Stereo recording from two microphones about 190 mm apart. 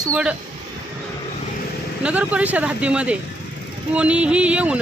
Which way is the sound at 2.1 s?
5° right (ahead or behind).